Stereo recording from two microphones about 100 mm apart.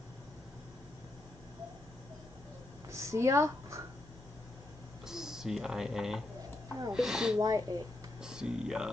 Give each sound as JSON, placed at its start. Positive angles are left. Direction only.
{"t": 2.9, "sound": "a sound", "side_deg": -30}
{"t": 5.0, "sound": "speech", "side_deg": -5}
{"t": 7.3, "sound": "speech", "side_deg": -35}
{"t": 8.2, "sound": "speech", "side_deg": -5}